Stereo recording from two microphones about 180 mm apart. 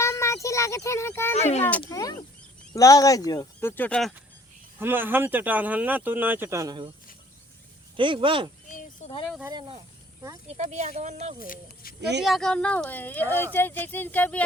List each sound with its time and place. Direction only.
0.0 s a sound: 15° left (ahead or behind)
1.4 s speech: 40° left (ahead or behind)
1.9 s speech: 20° left (ahead or behind)
4.8 s speech: 10° right (ahead or behind)
7.9 s speech: 30° right (ahead or behind)
10.6 s speech: 40° right (ahead or behind)
11.4 s speech: 50° left (ahead or behind)
12.2 s speech: centre (ahead or behind)